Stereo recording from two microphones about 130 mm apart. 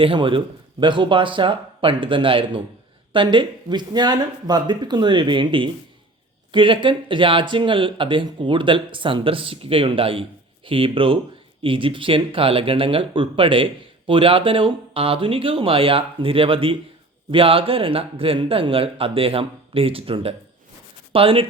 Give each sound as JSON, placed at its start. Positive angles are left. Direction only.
{"t": 0.0, "sound": "a man's voice", "side_deg": -40}